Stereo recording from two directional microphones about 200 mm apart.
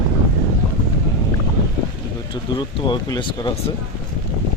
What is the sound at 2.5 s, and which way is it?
Speech, 25° left (ahead or behind).